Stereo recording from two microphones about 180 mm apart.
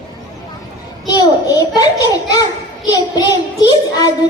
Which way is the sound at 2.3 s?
20° left (ahead or behind).